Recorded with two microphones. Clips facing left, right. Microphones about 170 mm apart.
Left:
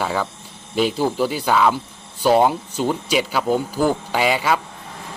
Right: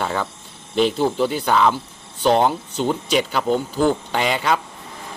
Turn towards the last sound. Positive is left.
turn(degrees=5)  # may be behind; listen again after turning